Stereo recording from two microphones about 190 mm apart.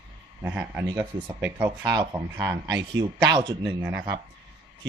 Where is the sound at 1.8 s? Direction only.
20° right (ahead or behind).